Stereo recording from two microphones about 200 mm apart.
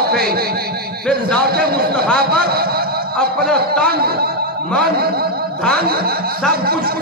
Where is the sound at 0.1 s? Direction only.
50° right (ahead or behind).